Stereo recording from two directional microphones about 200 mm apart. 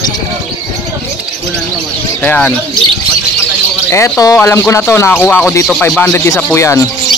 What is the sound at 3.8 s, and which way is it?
Speech, 15° left (ahead or behind).